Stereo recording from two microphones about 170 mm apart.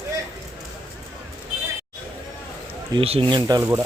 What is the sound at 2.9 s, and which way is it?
Speech, 35° right (ahead or behind).